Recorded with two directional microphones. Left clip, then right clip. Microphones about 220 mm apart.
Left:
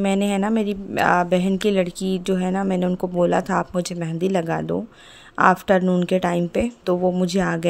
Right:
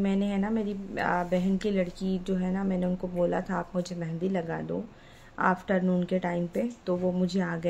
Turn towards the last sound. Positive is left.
turn(degrees=50)  # may be behind; listen again after turning